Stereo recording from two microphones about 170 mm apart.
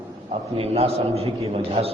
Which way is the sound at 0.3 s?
35° right (ahead or behind).